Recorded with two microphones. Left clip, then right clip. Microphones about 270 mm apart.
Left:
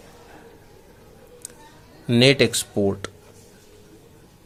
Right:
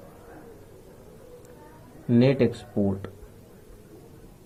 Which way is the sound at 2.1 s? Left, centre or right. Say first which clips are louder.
Left 5 dB; left.